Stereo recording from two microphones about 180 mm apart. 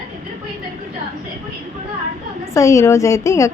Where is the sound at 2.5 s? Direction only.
15° left (ahead or behind).